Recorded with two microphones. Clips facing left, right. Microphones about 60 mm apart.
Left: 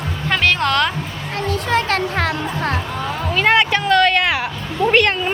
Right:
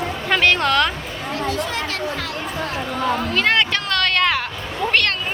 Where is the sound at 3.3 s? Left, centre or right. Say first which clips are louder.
Left 7 dB; centre.